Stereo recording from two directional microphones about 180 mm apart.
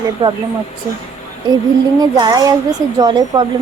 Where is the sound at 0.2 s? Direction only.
25° right (ahead or behind).